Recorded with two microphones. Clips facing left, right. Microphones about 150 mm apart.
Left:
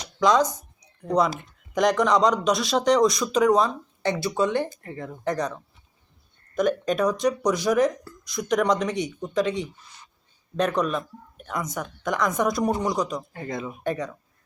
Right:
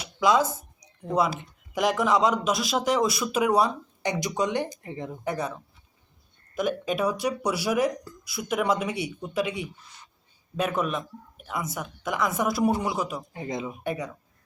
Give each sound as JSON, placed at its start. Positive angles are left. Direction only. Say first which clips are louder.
{"t": 0.0, "sound": "a sound", "louder": "left 2 dB", "side_deg": -5}
{"t": 1.7, "sound": "speech", "louder": "left 3 dB", "side_deg": -5}
{"t": 13.3, "sound": "speech", "louder": "even", "side_deg": -20}